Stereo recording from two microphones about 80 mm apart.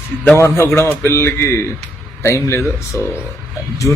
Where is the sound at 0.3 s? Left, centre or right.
Left.